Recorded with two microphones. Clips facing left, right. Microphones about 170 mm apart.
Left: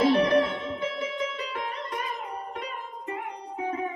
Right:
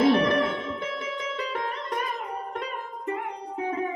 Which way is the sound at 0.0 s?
55° right (ahead or behind).